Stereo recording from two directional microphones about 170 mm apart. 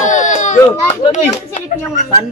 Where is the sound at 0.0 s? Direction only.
45° left (ahead or behind).